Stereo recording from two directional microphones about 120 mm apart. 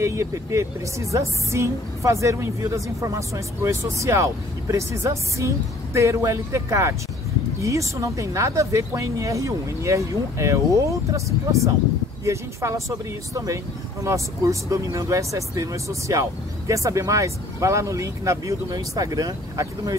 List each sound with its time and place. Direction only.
0.0 s speech: 25° right (ahead or behind)
14.0 s speech: 25° right (ahead or behind)